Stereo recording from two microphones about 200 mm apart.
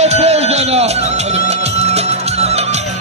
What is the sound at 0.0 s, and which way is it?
Music, 30° right (ahead or behind).